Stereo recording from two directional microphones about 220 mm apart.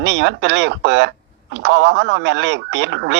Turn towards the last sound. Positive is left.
turn(degrees=-55)  # may be behind; listen again after turning